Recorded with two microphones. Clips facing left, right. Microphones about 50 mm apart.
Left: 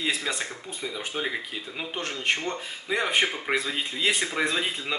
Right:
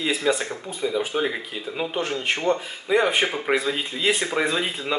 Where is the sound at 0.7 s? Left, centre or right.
Centre.